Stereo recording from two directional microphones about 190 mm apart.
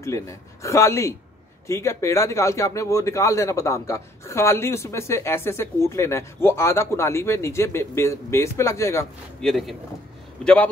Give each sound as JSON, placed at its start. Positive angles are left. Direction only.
{"t": 0.0, "sound": "a man's voice", "side_deg": 15}
{"t": 9.4, "sound": "speech", "side_deg": 0}